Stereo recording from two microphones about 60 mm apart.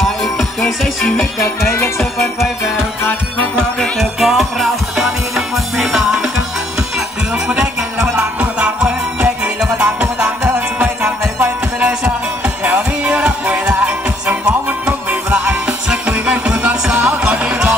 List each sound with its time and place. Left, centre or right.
0.0 s music: centre
1.4 s music: left
2.0 s music: centre
3.5 s music: centre
4.2 s music: centre
7.4 s music: centre
15.0 s music: right
15.9 s music: centre